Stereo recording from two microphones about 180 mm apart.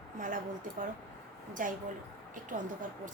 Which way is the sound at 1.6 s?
50° right (ahead or behind).